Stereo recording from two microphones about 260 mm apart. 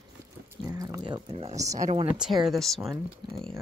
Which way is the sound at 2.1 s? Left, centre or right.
Centre.